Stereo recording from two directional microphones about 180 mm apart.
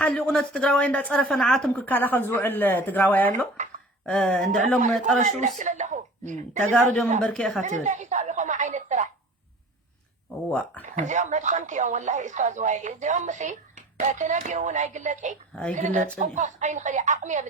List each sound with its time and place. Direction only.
0.0 s speech: 5° left (ahead or behind)
5.5 s a woman's voice: 40° right (ahead or behind)
6.8 s speech: 5° left (ahead or behind)
7.6 s a sound: 40° right (ahead or behind)
10.8 s a woman's voice: 40° right (ahead or behind)